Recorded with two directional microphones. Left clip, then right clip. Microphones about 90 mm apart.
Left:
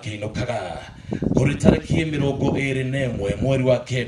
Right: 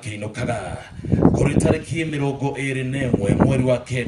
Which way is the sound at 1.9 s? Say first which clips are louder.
Left 1 dB; 15° left (ahead or behind).